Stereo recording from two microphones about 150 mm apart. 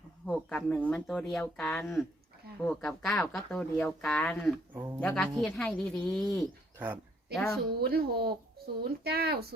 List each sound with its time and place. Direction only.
0.3 s speech: 5° left (ahead or behind)
6.7 s speech: 10° right (ahead or behind)
7.3 s speech: centre (ahead or behind)
7.8 s speech: 90° right